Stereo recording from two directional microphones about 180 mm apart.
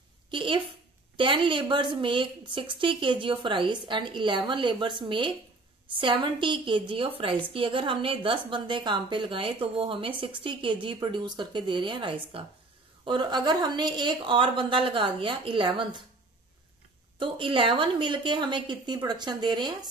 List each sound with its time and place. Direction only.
0.3 s a sound: 25° right (ahead or behind)
1.1 s a woman's voice: 25° right (ahead or behind)
17.2 s a woman's voice: 30° right (ahead or behind)